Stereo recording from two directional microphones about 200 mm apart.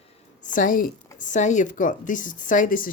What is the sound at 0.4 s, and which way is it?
Speech, 40° left (ahead or behind).